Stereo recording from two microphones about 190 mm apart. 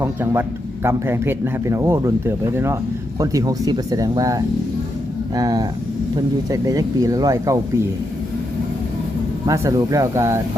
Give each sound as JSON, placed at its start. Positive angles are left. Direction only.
{"t": 0.0, "sound": "a man's voice", "side_deg": -10}
{"t": 9.5, "sound": "a man's voice", "side_deg": -15}